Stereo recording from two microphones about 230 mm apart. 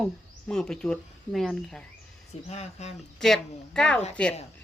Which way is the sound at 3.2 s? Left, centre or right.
Centre.